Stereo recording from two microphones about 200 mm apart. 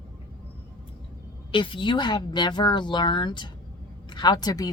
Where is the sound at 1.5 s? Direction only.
25° left (ahead or behind).